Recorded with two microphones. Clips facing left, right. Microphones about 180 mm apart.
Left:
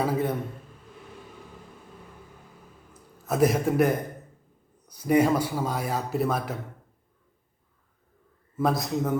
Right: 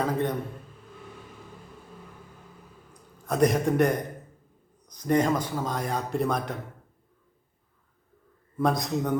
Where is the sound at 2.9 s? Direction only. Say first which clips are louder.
Left 1 dB; 5° left (ahead or behind).